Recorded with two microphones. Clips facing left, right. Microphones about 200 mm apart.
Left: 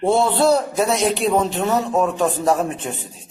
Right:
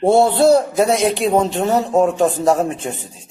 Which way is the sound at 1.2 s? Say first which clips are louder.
Right 3 dB; 35° right (ahead or behind).